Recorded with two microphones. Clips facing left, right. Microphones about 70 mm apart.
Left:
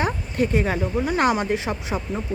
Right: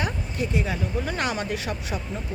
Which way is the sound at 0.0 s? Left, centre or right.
Left.